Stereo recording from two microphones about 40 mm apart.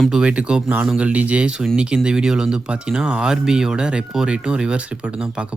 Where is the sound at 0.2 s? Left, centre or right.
Right.